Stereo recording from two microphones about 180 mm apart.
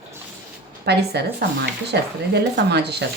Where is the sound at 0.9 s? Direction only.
65° right (ahead or behind).